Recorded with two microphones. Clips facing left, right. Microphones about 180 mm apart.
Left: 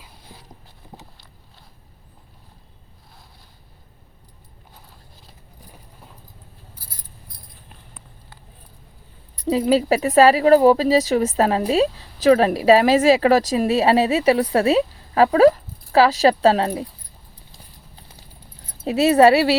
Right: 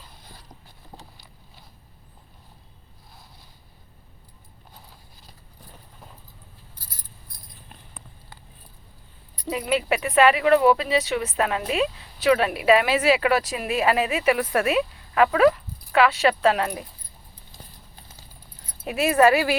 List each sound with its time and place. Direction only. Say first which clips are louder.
9.5 s speech: left 7 dB; 35° left (ahead or behind)
18.9 s speech: left 5 dB; 30° left (ahead or behind)